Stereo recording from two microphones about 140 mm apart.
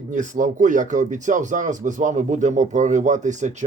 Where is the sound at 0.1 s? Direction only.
65° right (ahead or behind).